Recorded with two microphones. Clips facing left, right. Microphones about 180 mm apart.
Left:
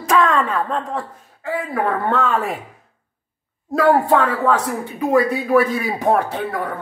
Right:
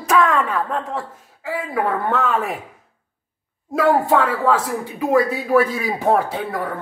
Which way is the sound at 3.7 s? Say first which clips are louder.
Left 1 dB; 5° right (ahead or behind).